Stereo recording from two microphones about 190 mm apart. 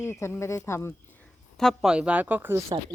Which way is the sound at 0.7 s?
15° left (ahead or behind).